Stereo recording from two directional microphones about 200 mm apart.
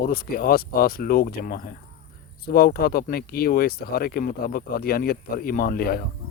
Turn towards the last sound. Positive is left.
turn(degrees=50)  # may be behind; listen again after turning